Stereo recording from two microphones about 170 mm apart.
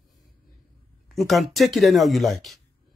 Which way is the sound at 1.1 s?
Centre (ahead or behind).